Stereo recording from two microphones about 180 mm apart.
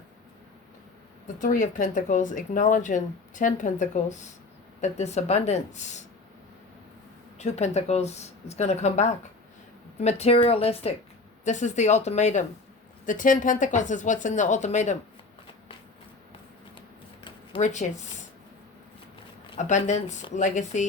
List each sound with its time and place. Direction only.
1.4 s speech: 45° left (ahead or behind)
7.3 s speech: 40° left (ahead or behind)
17.6 s speech: 40° left (ahead or behind)
19.5 s speech: 40° left (ahead or behind)